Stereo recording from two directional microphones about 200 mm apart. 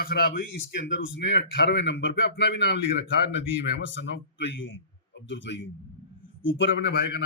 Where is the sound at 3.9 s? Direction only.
65° left (ahead or behind).